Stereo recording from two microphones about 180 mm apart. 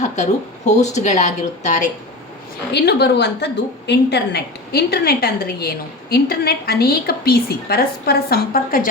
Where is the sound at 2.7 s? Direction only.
65° left (ahead or behind).